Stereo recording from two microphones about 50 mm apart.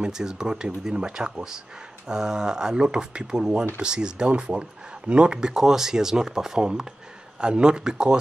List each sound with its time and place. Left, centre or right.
0.0 s speech: centre